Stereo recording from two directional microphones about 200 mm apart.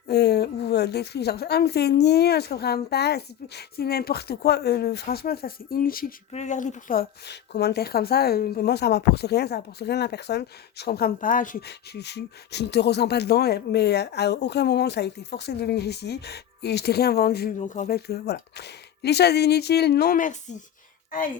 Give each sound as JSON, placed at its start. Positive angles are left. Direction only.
{"t": 0.1, "sound": "a woman's voice", "side_deg": 55}
{"t": 6.3, "sound": "speech", "side_deg": 35}
{"t": 17.6, "sound": "a woman's voice", "side_deg": 40}